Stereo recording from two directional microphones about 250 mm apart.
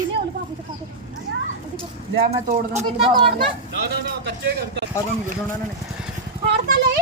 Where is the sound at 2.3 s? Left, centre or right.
Right.